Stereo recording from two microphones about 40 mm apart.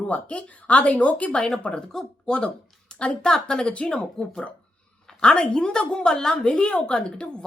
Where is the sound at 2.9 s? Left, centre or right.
Centre.